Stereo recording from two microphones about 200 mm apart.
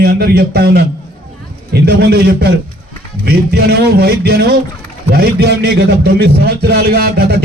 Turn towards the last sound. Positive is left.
turn(degrees=-50)  # may be behind; listen again after turning